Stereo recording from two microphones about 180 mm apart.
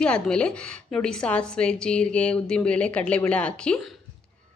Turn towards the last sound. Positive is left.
turn(degrees=5)  # may be behind; listen again after turning